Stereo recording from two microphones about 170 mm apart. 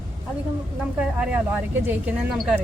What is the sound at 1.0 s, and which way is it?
A woman's voice, 5° right (ahead or behind).